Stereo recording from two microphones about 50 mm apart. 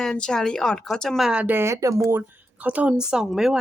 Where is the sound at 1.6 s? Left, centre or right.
Right.